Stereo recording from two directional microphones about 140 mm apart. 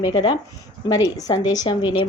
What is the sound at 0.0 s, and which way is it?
A woman's voice, 30° left (ahead or behind).